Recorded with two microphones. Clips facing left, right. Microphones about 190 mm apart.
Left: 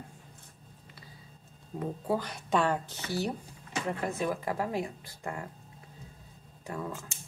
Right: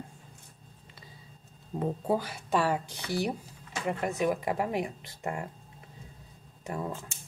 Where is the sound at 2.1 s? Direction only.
5° right (ahead or behind).